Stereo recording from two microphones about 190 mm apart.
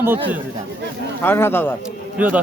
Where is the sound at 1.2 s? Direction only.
10° left (ahead or behind).